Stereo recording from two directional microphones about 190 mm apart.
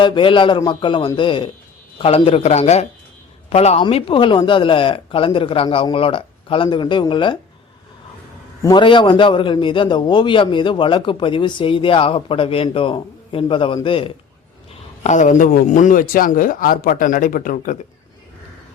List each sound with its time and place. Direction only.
0.0 s a man's voice: 25° left (ahead or behind)
8.6 s a man's voice: 25° left (ahead or behind)
15.0 s speech: 40° left (ahead or behind)